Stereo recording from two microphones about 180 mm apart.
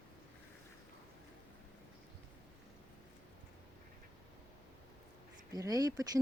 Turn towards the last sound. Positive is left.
turn(degrees=-20)  # may be behind; listen again after turning